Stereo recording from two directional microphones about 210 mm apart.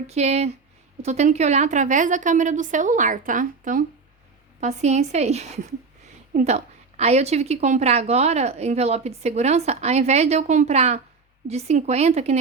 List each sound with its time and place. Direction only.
0.1 s a woman's voice: 30° right (ahead or behind)